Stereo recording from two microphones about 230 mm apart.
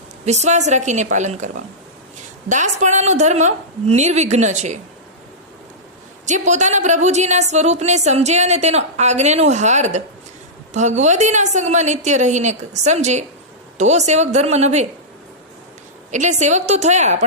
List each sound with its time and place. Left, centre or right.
0.3 s a woman's voice: right
2.5 s a woman's voice: right
6.2 s a woman's voice: right
16.1 s a woman's voice: right